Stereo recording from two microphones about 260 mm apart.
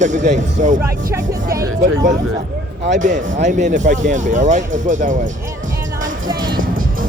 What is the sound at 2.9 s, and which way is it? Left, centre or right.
Speech, right.